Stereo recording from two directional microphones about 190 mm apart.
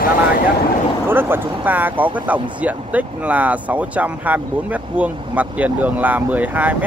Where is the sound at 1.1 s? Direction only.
10° right (ahead or behind).